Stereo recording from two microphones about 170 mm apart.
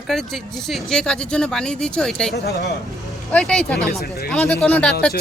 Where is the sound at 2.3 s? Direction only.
75° left (ahead or behind).